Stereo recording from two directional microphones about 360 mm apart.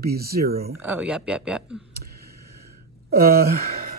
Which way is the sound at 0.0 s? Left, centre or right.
Right.